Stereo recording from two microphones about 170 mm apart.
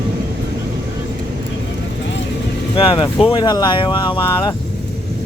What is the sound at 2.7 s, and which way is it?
Speech, 30° left (ahead or behind).